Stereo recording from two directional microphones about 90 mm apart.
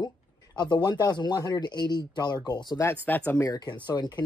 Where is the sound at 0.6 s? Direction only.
55° left (ahead or behind).